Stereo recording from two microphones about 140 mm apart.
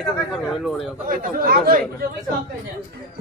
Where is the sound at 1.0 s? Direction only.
85° right.